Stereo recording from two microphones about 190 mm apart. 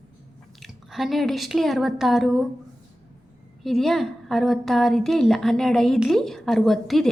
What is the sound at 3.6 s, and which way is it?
A woman's voice, centre (ahead or behind).